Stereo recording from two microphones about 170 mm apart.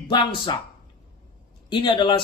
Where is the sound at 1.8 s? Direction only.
30° left (ahead or behind).